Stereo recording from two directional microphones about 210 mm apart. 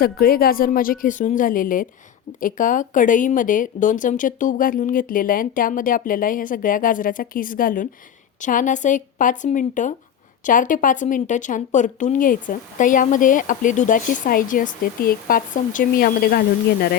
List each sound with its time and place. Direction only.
0.0 s speech: 45° left (ahead or behind)